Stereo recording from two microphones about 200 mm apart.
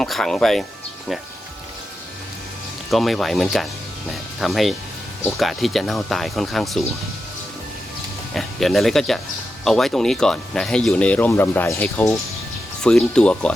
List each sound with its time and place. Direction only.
0.0 s speech: centre (ahead or behind)
2.9 s speech: centre (ahead or behind)
8.4 s speech: centre (ahead or behind)